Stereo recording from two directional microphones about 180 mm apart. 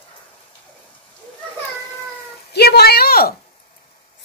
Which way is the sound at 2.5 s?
60° left (ahead or behind).